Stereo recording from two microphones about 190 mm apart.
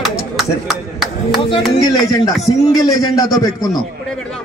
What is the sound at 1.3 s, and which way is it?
A man's voice, 25° left (ahead or behind).